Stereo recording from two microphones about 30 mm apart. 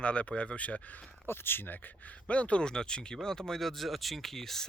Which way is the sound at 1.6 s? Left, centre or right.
Left.